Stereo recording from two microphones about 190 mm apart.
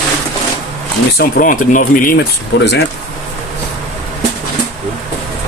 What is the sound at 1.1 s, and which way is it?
Speech, 50° left (ahead or behind).